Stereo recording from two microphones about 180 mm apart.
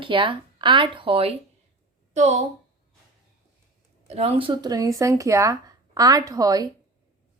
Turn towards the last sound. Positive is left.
turn(degrees=-20)  # may be behind; listen again after turning